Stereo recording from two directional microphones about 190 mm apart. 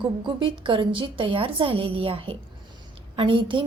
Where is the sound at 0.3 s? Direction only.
25° right (ahead or behind).